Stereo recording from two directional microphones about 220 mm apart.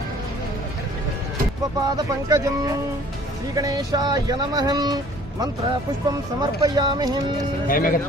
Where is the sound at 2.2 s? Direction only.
15° right (ahead or behind).